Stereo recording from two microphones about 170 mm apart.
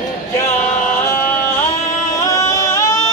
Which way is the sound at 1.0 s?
15° left (ahead or behind).